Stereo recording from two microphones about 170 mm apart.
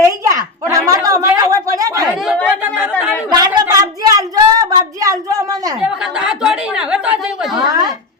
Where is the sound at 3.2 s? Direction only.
20° right (ahead or behind).